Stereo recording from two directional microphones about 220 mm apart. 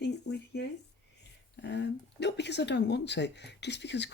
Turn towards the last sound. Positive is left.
turn(degrees=50)  # may be behind; listen again after turning